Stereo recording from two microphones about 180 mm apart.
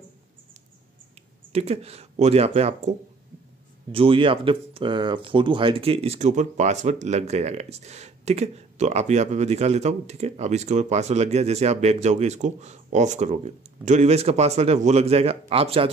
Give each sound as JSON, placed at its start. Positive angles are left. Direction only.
{"t": 1.5, "sound": "speech", "side_deg": -35}